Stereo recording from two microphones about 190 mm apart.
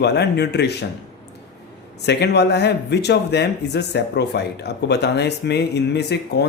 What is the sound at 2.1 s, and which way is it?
Speech, 60° left (ahead or behind).